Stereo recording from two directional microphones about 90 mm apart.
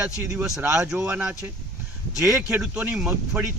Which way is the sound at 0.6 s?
25° right (ahead or behind).